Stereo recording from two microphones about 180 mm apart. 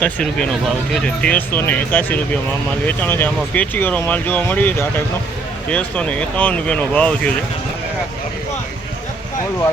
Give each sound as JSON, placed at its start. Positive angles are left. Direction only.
{"t": 0.0, "sound": "speech", "side_deg": 5}